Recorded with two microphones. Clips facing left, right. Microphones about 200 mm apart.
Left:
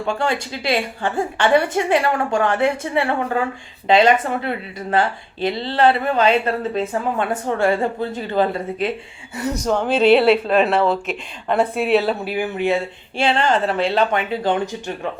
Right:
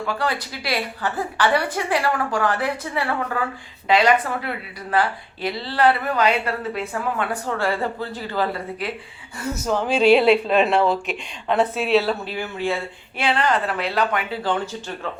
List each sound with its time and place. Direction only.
0.0 s speech: 25° left (ahead or behind)
9.7 s speech: 5° right (ahead or behind); by 15.1 s 15° left (ahead or behind)